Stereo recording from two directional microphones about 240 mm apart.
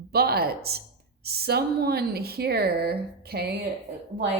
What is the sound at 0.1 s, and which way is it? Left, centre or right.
A woman's voice, right.